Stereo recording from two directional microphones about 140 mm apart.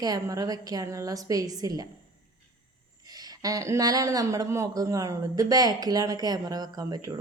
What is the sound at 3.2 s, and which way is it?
A woman's voice, 25° right (ahead or behind).